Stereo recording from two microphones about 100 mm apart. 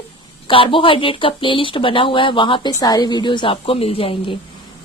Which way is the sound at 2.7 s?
40° left (ahead or behind).